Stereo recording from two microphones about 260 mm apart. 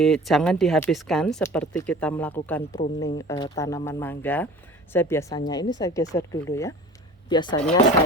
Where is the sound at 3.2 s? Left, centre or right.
Centre.